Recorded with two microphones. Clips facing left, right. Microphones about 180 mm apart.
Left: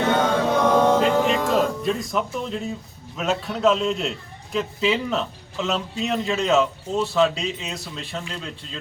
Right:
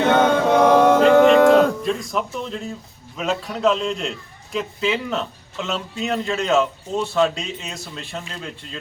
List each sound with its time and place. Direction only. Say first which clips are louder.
0.6 s mantra: right 5 dB; 70° right (ahead or behind)
1.5 s a man's voice: right 5 dB; centre (ahead or behind)